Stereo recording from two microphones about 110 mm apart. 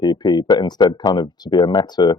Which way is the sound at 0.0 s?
35° left (ahead or behind).